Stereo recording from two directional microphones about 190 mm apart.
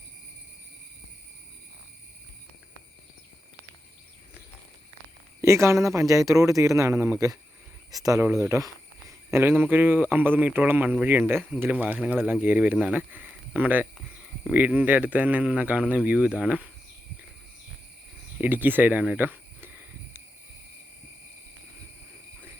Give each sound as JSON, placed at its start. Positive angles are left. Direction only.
{"t": 5.4, "sound": "speech", "side_deg": -15}
{"t": 18.3, "sound": "speech", "side_deg": -10}